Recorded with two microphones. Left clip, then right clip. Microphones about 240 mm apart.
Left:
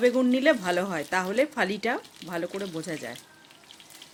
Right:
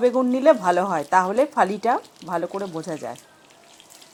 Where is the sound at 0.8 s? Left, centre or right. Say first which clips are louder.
Right 9 dB; centre.